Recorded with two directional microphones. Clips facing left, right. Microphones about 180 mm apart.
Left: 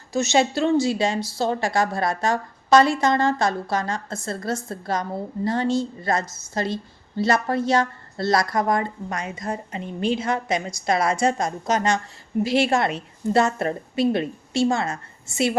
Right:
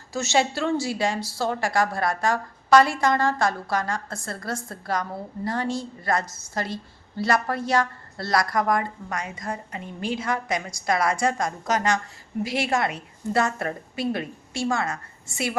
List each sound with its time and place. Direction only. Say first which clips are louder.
0.1 s a woman's voice: left 3 dB; 20° left (ahead or behind)